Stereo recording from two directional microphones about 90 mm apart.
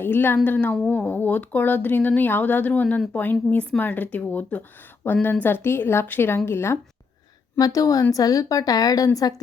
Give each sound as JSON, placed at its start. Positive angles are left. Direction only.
{"t": 0.0, "sound": "speech", "side_deg": 25}
{"t": 7.6, "sound": "speech", "side_deg": 40}